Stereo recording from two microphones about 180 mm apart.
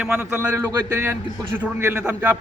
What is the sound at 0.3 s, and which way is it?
A man's voice, 15° right (ahead or behind).